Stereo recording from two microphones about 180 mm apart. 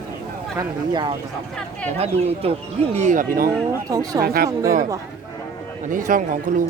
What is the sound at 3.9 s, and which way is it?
Speech, 20° right (ahead or behind).